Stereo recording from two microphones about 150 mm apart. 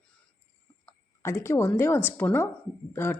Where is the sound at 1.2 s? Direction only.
20° left (ahead or behind).